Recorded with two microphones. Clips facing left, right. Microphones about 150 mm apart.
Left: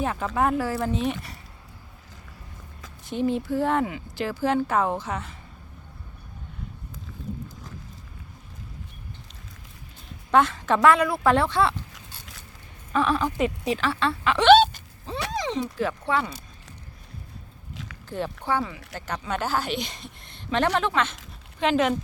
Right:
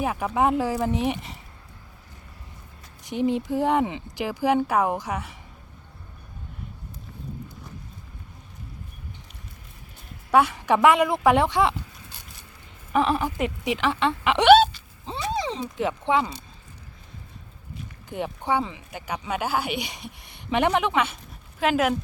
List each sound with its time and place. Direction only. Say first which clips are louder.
0.0 s speech: right 1 dB; 10° right (ahead or behind)
3.0 s speech: right 1 dB; 15° right (ahead or behind)
10.3 s a woman's voice: right 1 dB; 15° right (ahead or behind)
12.9 s speech: right 1 dB; 15° right (ahead or behind)
15.3 s a sound: even; 30° right (ahead or behind)
15.8 s speech: right 5 dB; 20° right (ahead or behind)
18.1 s speech: right 1 dB; 15° right (ahead or behind)